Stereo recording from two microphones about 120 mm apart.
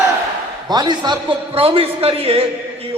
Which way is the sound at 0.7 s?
35° right (ahead or behind).